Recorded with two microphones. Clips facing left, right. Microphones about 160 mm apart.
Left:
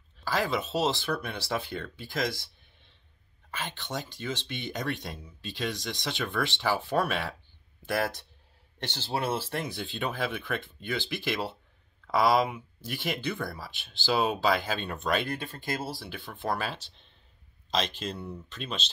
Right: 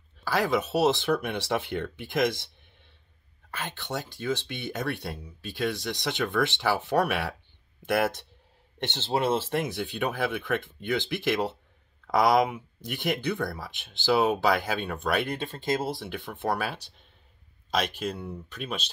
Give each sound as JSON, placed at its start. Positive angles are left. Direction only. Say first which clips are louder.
{"t": 0.3, "sound": "speech", "louder": "right 3 dB", "side_deg": -15}
{"t": 3.5, "sound": "speech", "louder": "right 2 dB", "side_deg": -10}
{"t": 4.6, "sound": "speech", "louder": "right 2 dB", "side_deg": 20}
{"t": 5.2, "sound": "speech", "louder": "right 4 dB", "side_deg": -10}